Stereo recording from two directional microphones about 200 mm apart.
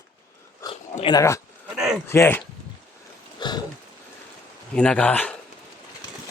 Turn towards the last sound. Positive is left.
turn(degrees=5)  # may be behind; listen again after turning